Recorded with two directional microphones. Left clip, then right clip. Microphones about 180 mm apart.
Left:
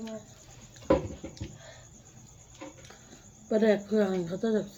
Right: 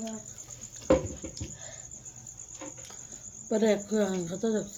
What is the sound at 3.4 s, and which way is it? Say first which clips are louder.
Speech: left 1 dB; 10° right (ahead or behind).